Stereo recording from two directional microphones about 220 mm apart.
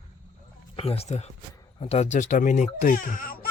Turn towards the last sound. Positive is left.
turn(degrees=40)  # may be behind; listen again after turning